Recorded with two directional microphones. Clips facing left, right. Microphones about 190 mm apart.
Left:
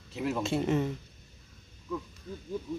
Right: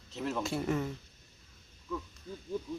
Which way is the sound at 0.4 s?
20° left (ahead or behind).